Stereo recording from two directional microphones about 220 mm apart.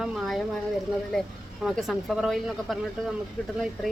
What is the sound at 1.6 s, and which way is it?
A woman's voice, centre (ahead or behind).